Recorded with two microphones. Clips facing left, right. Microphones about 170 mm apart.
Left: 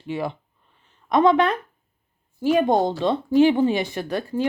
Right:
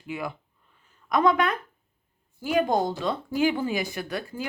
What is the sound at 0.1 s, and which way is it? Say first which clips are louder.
Speech: left 6 dB; 30° left (ahead or behind).